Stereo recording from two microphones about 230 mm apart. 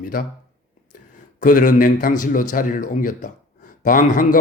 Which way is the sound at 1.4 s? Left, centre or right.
Left.